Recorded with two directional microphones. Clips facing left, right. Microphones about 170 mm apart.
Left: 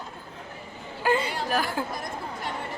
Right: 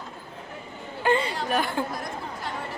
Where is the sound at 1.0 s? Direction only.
5° left (ahead or behind).